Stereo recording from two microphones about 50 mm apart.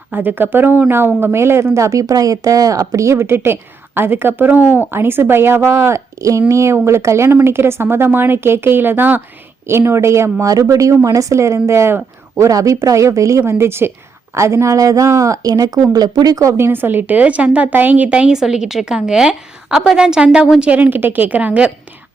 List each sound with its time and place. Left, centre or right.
0.1 s a woman's voice: right
6.8 s a woman's voice: right
7.3 s a woman's voice: right
9.6 s a woman's voice: right
10.6 s speech: right
12.4 s speech: right
13.5 s a woman's voice: right
14.3 s speech: right
16.4 s a woman's voice: right
16.7 s a woman's voice: right
18.3 s a woman's voice: centre
20.7 s a woman's voice: right